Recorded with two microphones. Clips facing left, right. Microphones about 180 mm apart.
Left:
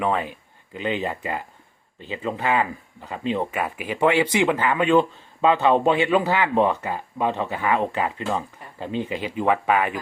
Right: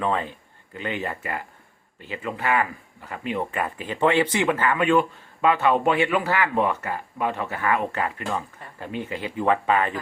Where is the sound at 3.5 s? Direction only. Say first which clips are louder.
Left 1 dB; 10° left (ahead or behind).